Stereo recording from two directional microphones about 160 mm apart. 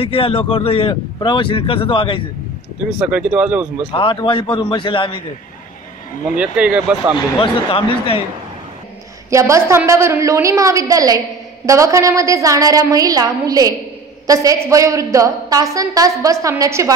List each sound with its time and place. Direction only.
0.0 s a man's voice: 35° left (ahead or behind)
3.0 s speech: 5° right (ahead or behind)
3.9 s a man's voice: 30° left (ahead or behind)
6.4 s speech: 5° right (ahead or behind)
7.2 s a man's voice: 35° left (ahead or behind)
9.3 s a woman's voice: 20° right (ahead or behind)